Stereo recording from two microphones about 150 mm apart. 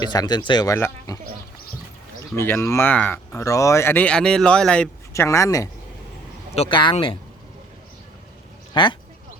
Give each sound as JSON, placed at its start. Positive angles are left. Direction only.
{"t": 0.0, "sound": "speech", "side_deg": 25}
{"t": 2.3, "sound": "speech", "side_deg": 15}
{"t": 5.1, "sound": "speech", "side_deg": 20}
{"t": 6.6, "sound": "speech", "side_deg": 35}
{"t": 8.7, "sound": "speech", "side_deg": 35}